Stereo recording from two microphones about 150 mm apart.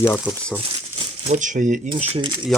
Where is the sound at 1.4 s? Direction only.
55° right (ahead or behind).